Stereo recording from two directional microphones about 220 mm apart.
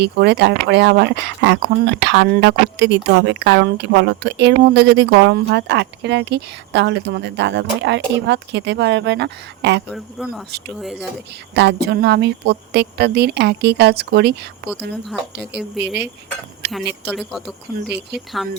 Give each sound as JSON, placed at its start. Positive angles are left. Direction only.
{"t": 0.0, "sound": "speech", "side_deg": -50}
{"t": 9.9, "sound": "speech", "side_deg": 0}
{"t": 11.5, "sound": "a woman's voice", "side_deg": -50}
{"t": 17.1, "sound": "speech", "side_deg": 0}
{"t": 17.8, "sound": "speech", "side_deg": -50}